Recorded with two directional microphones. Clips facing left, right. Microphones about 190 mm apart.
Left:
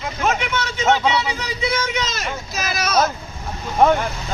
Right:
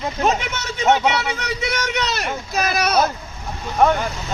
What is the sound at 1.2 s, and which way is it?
Speech, 65° right (ahead or behind).